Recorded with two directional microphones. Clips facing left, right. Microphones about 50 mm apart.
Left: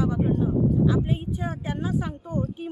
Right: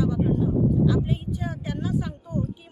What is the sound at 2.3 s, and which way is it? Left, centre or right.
Speech, left.